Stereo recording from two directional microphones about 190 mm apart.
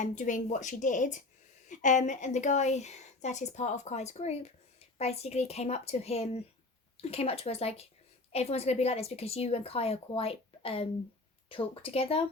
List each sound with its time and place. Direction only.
0.0 s a woman's voice: 40° left (ahead or behind)